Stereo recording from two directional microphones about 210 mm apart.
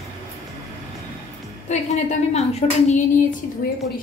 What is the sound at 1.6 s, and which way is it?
A woman's voice, 35° left (ahead or behind).